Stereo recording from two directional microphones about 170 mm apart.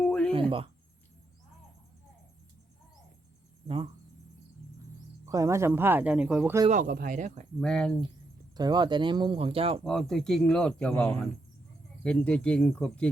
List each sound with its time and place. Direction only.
0.0 s a sound: 5° left (ahead or behind)
5.2 s speech: 20° right (ahead or behind)
6.7 s speech: 50° right (ahead or behind)
7.6 s speech: 5° left (ahead or behind)
8.5 s speech: 25° right (ahead or behind)
9.8 s speech: centre (ahead or behind)